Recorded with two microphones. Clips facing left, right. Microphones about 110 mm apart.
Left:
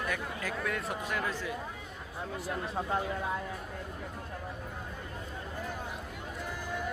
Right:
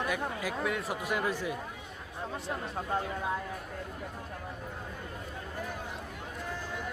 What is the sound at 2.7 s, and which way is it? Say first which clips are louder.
Speech: left 1 dB; 5° left (ahead or behind).